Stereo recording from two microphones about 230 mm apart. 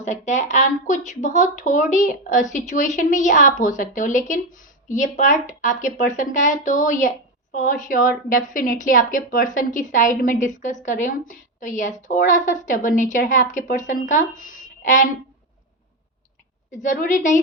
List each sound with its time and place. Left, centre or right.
0.0 s speech: left
16.7 s speech: left